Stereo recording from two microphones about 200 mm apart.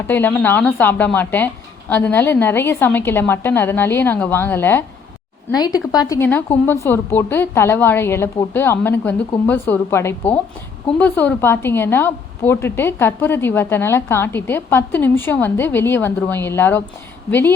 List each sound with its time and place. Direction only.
0.1 s a woman's voice: 10° left (ahead or behind)